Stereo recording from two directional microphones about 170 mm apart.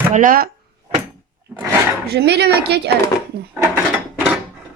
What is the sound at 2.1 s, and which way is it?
A woman's voice, 75° right (ahead or behind).